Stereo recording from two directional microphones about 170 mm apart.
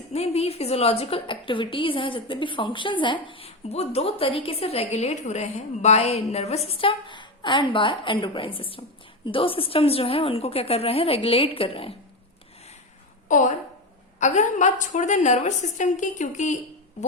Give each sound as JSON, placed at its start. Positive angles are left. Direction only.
{"t": 0.1, "sound": "a woman's voice", "side_deg": 40}
{"t": 13.2, "sound": "a woman's voice", "side_deg": 50}